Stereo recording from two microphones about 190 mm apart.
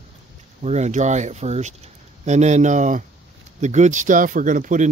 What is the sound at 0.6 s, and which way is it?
Speech, 35° right (ahead or behind).